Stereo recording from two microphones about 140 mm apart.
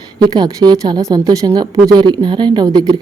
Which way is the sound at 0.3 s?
30° right (ahead or behind).